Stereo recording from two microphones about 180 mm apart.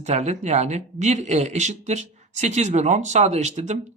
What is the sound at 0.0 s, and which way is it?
Speech, 40° right (ahead or behind).